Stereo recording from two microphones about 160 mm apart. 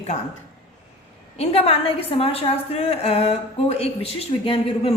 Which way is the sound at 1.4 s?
40° left (ahead or behind).